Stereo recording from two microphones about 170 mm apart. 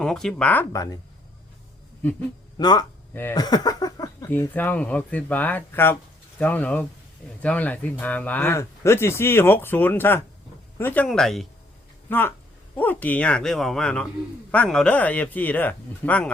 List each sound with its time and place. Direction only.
0.0 s speech: 5° left (ahead or behind)
2.6 s speech: 25° left (ahead or behind)
3.1 s speech: 10° left (ahead or behind)
3.3 s a sound: 25° left (ahead or behind)
4.3 s speech: 10° left (ahead or behind)